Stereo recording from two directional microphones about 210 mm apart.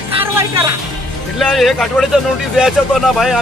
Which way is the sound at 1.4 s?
Centre (ahead or behind).